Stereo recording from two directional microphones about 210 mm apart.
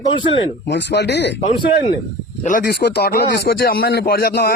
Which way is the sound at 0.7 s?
55° left (ahead or behind).